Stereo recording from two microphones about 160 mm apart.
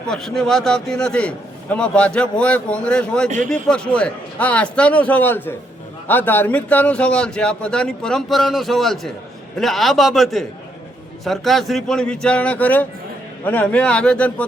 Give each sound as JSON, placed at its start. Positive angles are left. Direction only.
{"t": 0.1, "sound": "a man's voice", "side_deg": 0}
{"t": 3.2, "sound": "speech", "side_deg": -50}
{"t": 3.5, "sound": "a man's voice", "side_deg": 5}